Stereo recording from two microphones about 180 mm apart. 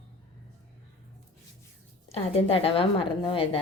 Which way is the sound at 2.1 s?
30° left (ahead or behind).